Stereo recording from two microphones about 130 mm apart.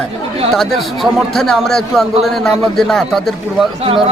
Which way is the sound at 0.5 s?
Centre (ahead or behind).